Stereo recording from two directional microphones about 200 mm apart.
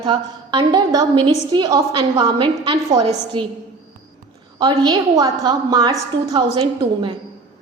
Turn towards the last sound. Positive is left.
turn(degrees=-20)  # may be behind; listen again after turning